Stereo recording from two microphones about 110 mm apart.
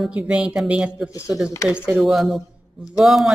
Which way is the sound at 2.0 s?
Centre (ahead or behind).